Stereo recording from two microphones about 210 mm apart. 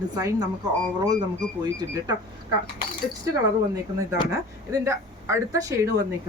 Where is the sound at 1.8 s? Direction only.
20° right (ahead or behind).